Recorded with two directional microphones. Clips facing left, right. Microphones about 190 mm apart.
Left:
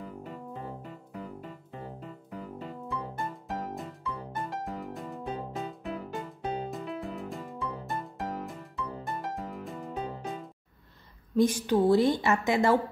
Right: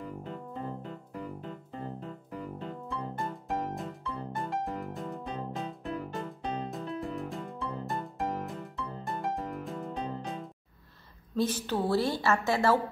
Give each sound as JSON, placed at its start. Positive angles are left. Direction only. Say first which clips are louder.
{"t": 0.0, "sound": "music", "louder": "right 1 dB", "side_deg": 5}
{"t": 2.3, "sound": "music", "louder": "even", "side_deg": 5}
{"t": 11.3, "sound": "a woman's voice", "louder": "left 5 dB", "side_deg": 15}